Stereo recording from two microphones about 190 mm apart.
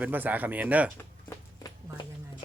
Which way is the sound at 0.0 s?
10° right (ahead or behind).